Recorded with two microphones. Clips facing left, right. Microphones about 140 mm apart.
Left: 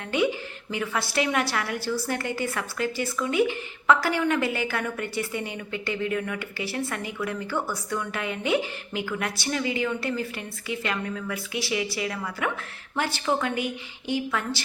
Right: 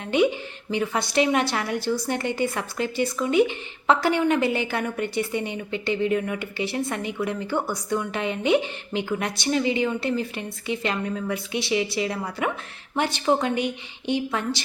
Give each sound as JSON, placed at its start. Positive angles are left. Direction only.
{"t": 0.0, "sound": "a woman's voice", "side_deg": -20}